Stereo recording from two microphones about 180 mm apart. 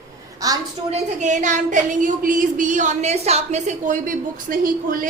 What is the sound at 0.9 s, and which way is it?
A woman's voice, 40° right (ahead or behind).